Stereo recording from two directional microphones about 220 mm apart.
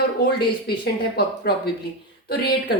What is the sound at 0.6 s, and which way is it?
A woman's voice, 45° left (ahead or behind).